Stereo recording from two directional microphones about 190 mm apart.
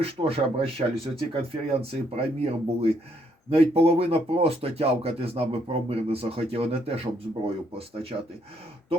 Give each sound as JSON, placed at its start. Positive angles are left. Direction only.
{"t": 0.0, "sound": "speech", "side_deg": -30}